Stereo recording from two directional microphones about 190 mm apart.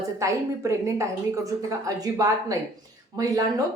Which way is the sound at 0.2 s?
15° right (ahead or behind).